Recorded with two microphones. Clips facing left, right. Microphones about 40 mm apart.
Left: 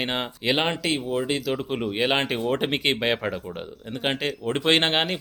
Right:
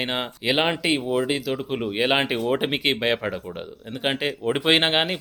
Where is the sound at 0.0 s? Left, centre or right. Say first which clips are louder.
Right 1 dB; centre.